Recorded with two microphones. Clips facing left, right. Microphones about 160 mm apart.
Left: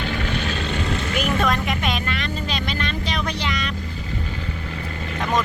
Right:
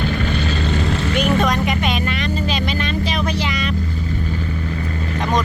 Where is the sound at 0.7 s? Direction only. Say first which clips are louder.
Right 4 dB; 35° right (ahead or behind).